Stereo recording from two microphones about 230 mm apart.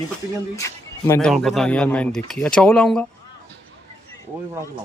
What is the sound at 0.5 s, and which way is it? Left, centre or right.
Speech, centre.